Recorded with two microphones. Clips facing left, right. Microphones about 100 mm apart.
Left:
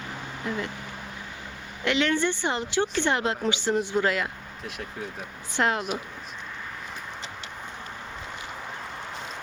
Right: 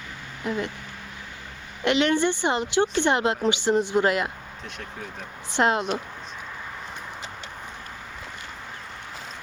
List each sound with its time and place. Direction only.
1.8 s speech: 20° right (ahead or behind)
4.6 s speech: 5° left (ahead or behind)
5.5 s speech: 25° right (ahead or behind)